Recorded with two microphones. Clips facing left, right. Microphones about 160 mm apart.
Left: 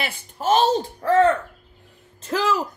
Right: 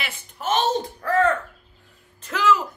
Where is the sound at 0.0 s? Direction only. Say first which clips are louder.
Left 5 dB; 35° left (ahead or behind).